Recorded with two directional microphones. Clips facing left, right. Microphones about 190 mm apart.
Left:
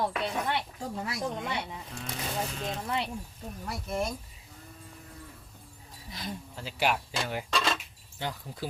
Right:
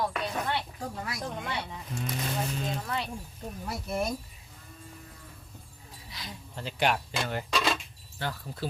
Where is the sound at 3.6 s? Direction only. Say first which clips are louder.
Right 1 dB; 5° right (ahead or behind).